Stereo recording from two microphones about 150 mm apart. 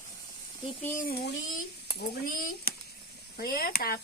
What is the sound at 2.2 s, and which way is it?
Speech, 75° left (ahead or behind).